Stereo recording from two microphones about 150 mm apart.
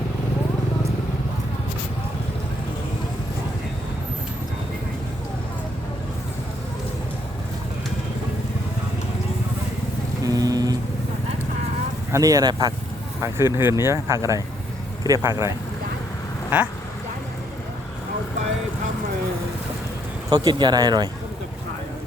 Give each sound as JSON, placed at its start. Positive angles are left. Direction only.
{"t": 10.2, "sound": "music", "side_deg": -25}
{"t": 12.1, "sound": "speech", "side_deg": -25}
{"t": 16.5, "sound": "speech", "side_deg": -10}
{"t": 20.3, "sound": "speech", "side_deg": -30}